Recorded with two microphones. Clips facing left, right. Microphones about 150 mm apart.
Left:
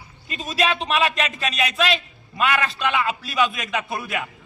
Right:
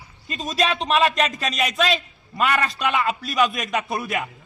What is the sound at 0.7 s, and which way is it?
A man's voice, 35° right (ahead or behind).